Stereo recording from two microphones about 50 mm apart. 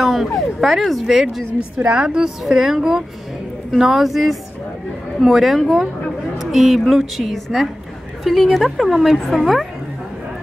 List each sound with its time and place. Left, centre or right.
0.0 s a woman's voice: centre
1.8 s a woman's voice: right; by 9.7 s centre